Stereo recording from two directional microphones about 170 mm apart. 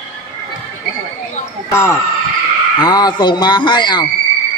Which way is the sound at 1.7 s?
15° left (ahead or behind).